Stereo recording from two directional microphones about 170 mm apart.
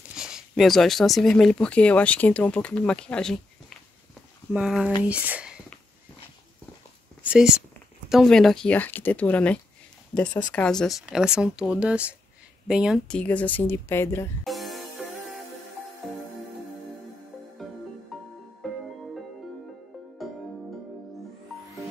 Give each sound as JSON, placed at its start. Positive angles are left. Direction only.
{"t": 0.1, "sound": "speech", "side_deg": -5}
{"t": 7.2, "sound": "speech", "side_deg": -5}
{"t": 13.2, "sound": "speech", "side_deg": 10}
{"t": 14.4, "sound": "music", "side_deg": 0}
{"t": 17.6, "sound": "music", "side_deg": 0}